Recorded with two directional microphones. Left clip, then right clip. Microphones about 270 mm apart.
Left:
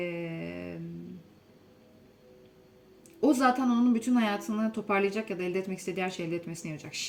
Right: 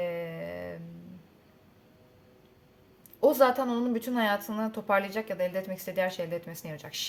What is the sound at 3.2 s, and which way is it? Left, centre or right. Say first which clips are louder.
A woman's voice: right 2 dB; right.